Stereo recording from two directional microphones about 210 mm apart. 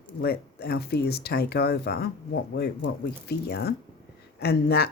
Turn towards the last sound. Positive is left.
turn(degrees=50)  # may be behind; listen again after turning